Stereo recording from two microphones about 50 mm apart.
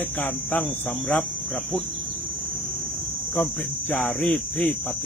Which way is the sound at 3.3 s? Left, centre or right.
Left.